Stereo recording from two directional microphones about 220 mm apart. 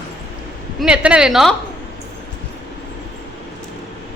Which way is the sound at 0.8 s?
5° right (ahead or behind).